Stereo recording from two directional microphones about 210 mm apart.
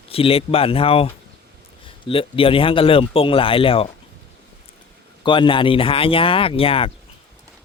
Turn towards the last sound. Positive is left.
turn(degrees=25)  # may be behind; listen again after turning